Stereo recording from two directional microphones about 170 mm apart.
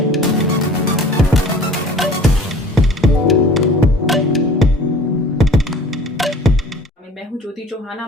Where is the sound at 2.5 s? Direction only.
Centre (ahead or behind).